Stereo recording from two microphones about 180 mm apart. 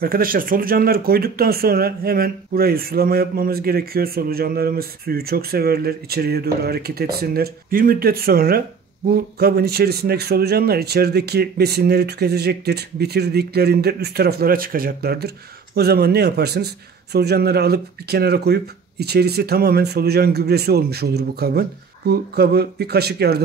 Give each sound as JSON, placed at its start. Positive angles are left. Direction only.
{"t": 0.0, "sound": "speech", "side_deg": -55}